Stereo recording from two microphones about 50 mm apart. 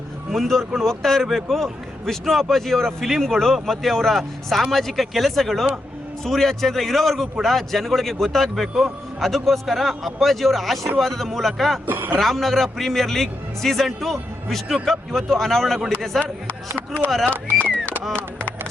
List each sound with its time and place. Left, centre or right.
0.3 s a man's voice: centre
11.9 s speech: right
12.2 s a man's voice: centre
16.2 s speech: left